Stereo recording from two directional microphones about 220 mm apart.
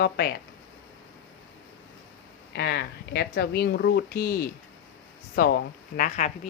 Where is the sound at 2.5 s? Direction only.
45° left (ahead or behind).